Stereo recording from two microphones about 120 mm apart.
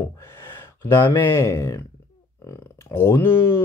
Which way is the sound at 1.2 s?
20° left (ahead or behind).